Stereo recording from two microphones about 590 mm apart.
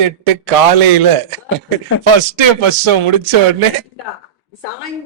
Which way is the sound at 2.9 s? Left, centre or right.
Right.